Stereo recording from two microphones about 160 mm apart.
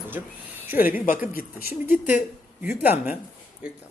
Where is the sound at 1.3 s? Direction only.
65° left (ahead or behind).